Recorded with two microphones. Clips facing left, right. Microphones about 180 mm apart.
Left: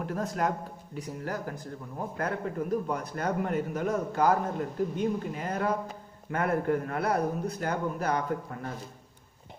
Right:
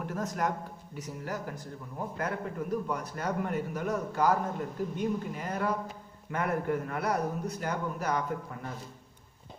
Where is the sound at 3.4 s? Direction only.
45° left (ahead or behind).